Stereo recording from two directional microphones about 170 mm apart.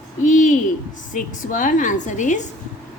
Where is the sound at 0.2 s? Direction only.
50° left (ahead or behind).